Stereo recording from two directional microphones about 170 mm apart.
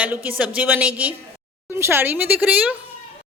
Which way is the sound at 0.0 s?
10° right (ahead or behind).